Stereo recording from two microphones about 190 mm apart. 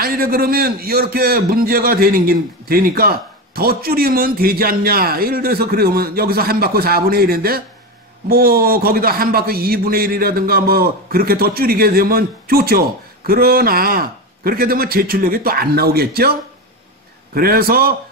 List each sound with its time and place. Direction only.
0.0 s a man's voice: 50° right (ahead or behind)